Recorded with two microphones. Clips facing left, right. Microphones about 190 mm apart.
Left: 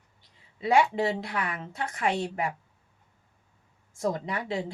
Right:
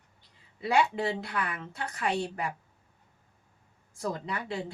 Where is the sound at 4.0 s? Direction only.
25° left (ahead or behind).